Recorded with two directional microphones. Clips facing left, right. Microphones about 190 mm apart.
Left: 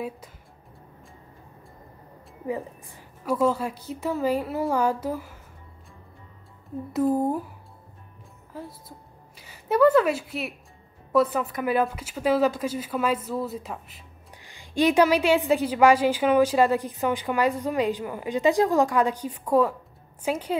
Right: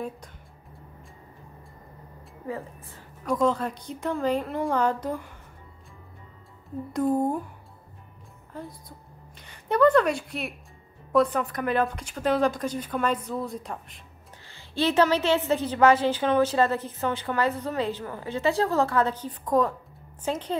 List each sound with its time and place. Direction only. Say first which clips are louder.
2.4 s a woman's voice: left 4 dB; 15° left (ahead or behind)
6.9 s speech: left 1 dB; 5° left (ahead or behind)
8.5 s a woman's voice: even; 5° left (ahead or behind)
14.4 s a woman's voice: left 4 dB; 15° left (ahead or behind)